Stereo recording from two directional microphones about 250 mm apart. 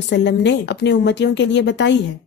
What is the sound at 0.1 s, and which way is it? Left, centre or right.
A woman's voice, left.